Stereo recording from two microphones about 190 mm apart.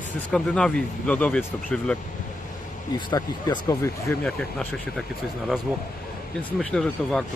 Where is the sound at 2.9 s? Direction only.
20° left (ahead or behind).